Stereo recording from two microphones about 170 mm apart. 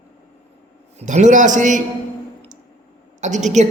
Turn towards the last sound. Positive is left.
turn(degrees=-45)  # may be behind; listen again after turning